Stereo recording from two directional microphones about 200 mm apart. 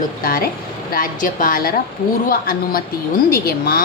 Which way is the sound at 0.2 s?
45° left (ahead or behind).